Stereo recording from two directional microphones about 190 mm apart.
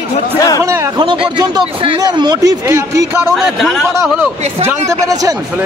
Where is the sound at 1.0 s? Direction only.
25° right (ahead or behind).